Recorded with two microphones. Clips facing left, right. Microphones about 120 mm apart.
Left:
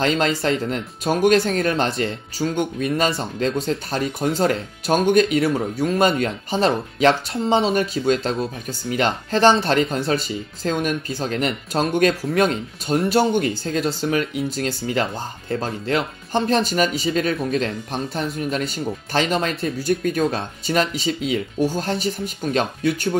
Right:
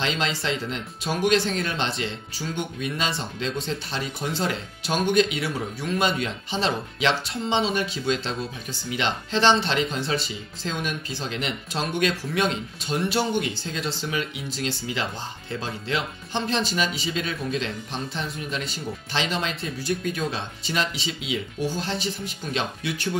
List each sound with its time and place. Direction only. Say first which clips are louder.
0.0 s speech: left 7 dB; 45° left (ahead or behind)